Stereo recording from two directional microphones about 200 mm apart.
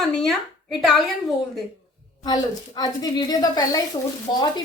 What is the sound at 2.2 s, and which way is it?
A woman's voice, 20° left (ahead or behind).